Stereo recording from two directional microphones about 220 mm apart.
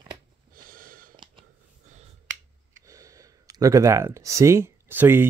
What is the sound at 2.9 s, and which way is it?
Speech, 15° right (ahead or behind).